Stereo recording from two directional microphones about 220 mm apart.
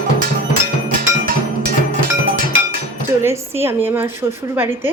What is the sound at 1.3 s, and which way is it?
Music, 40° right (ahead or behind).